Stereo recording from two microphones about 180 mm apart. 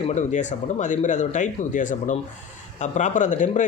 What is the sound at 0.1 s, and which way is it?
Speech, 40° left (ahead or behind).